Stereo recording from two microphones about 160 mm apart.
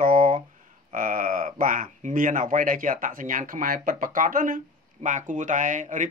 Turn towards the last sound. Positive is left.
turn(degrees=-50)  # may be behind; listen again after turning